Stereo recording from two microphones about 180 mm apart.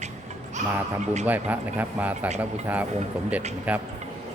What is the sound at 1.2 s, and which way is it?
A man's voice, 10° right (ahead or behind).